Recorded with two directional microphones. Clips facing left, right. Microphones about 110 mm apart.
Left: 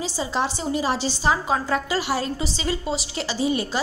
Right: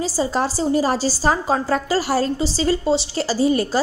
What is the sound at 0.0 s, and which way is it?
A woman's voice, 40° right (ahead or behind).